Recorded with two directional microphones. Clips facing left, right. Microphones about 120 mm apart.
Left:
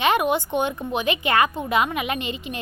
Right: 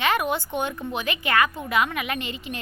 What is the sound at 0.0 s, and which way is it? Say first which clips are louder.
A woman's voice: left 4 dB; 20° left (ahead or behind).